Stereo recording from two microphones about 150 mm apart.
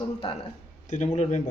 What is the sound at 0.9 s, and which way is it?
Speech, 50° left (ahead or behind).